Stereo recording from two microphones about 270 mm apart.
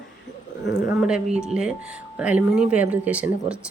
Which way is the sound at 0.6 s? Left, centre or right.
Left.